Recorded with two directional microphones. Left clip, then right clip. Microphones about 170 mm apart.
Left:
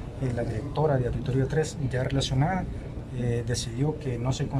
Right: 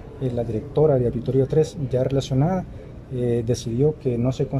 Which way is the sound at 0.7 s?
30° right (ahead or behind).